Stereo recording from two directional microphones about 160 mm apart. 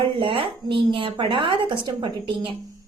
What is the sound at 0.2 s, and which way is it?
A woman's voice, 35° right (ahead or behind).